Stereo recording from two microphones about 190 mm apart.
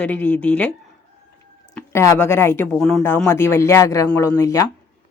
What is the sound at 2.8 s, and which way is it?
Speech, centre (ahead or behind).